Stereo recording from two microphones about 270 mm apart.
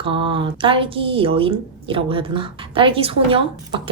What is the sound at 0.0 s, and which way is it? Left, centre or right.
A woman's voice, centre.